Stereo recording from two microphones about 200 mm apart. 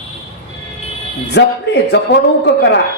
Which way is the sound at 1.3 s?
60° left (ahead or behind).